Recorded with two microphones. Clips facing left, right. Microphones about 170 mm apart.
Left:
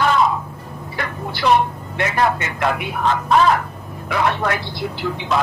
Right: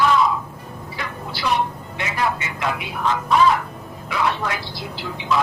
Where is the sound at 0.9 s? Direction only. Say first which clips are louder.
Left 5 dB; 60° left (ahead or behind).